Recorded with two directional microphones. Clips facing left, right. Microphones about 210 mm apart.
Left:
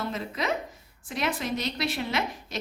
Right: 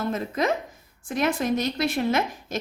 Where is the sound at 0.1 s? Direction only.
50° right (ahead or behind).